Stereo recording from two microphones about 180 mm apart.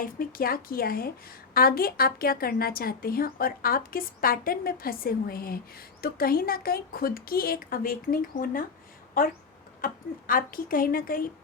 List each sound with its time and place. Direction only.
0.0 s a woman's voice: 50° left (ahead or behind)